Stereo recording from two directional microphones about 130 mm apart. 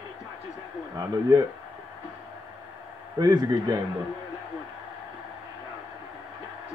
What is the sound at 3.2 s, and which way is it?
Speech, 30° right (ahead or behind).